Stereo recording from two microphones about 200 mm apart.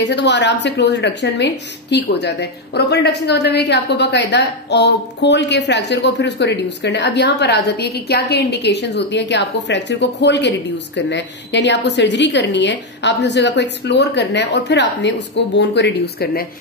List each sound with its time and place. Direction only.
0.0 s a woman's voice: 60° left (ahead or behind)